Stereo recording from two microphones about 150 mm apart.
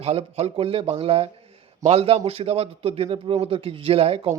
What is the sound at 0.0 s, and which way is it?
Speech, 45° right (ahead or behind).